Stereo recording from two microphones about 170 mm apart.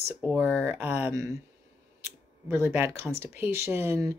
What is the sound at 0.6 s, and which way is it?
Speech, 15° right (ahead or behind).